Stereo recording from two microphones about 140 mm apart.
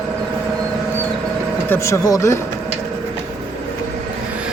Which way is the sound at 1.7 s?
20° left (ahead or behind).